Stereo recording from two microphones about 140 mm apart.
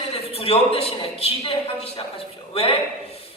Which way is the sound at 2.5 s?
40° left (ahead or behind).